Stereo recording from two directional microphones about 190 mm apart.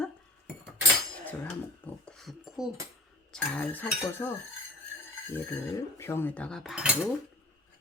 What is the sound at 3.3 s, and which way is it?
Speech, 10° left (ahead or behind).